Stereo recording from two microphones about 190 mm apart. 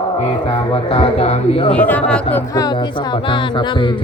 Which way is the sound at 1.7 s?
5° left (ahead or behind).